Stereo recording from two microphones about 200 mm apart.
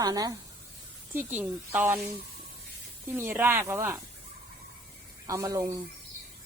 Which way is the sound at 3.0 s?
10° right (ahead or behind).